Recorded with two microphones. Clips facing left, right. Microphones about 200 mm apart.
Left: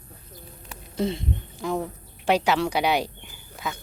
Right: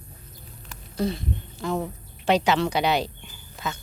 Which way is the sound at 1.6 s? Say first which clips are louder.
Even; 10° left (ahead or behind).